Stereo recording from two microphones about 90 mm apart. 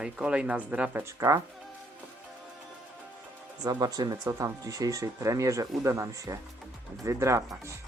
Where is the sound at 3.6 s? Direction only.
45° right (ahead or behind).